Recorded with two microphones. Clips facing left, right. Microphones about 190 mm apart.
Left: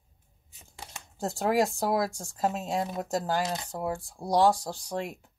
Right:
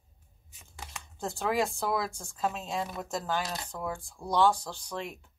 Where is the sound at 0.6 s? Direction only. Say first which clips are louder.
Even; 35° left (ahead or behind).